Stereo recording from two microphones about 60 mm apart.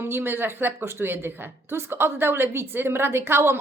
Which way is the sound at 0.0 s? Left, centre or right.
Right.